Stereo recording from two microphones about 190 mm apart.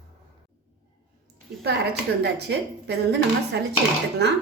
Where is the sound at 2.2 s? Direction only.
60° right (ahead or behind).